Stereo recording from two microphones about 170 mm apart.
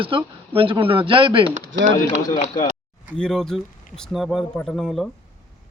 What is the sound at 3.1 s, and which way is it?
Speech, 5° left (ahead or behind).